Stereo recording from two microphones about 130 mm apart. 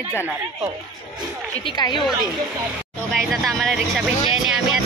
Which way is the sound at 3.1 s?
Centre (ahead or behind).